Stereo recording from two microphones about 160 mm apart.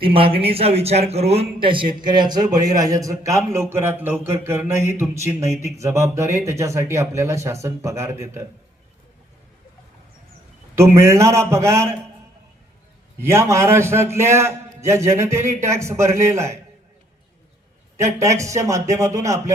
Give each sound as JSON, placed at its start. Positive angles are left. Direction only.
{"t": 0.0, "sound": "a man's voice", "side_deg": -35}
{"t": 10.8, "sound": "a man's voice", "side_deg": -15}
{"t": 13.2, "sound": "a man's voice", "side_deg": -15}
{"t": 18.0, "sound": "a man's voice", "side_deg": -20}